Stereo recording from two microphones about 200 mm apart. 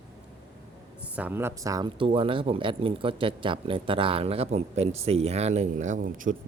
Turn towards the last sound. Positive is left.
turn(degrees=-40)  # may be behind; listen again after turning